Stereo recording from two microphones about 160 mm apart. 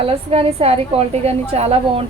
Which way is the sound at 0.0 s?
35° right (ahead or behind).